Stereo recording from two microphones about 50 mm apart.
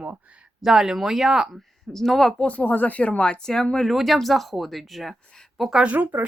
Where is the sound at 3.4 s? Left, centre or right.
Centre.